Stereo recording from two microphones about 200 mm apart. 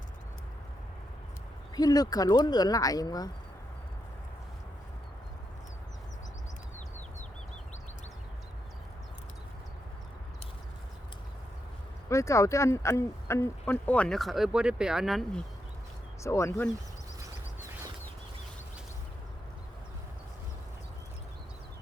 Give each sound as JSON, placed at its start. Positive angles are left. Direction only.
{"t": 1.7, "sound": "speech", "side_deg": 20}
{"t": 12.0, "sound": "speech", "side_deg": 15}
{"t": 16.2, "sound": "speech", "side_deg": 15}